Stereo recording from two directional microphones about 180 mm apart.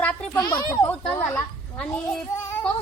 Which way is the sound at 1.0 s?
5° left (ahead or behind).